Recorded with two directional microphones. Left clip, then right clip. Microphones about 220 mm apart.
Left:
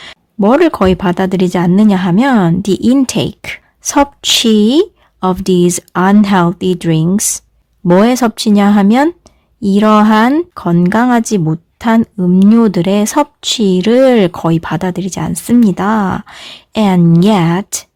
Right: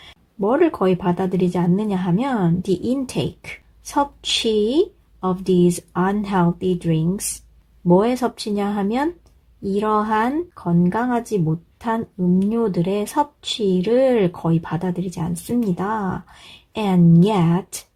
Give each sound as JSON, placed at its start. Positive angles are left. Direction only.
{"t": 0.0, "sound": "a woman's voice", "side_deg": 35}